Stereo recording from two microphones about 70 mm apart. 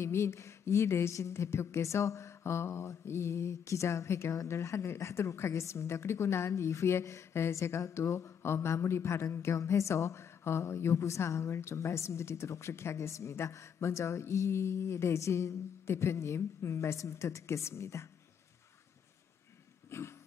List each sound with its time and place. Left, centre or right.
0.0 s a woman's voice: left
19.9 s dog: left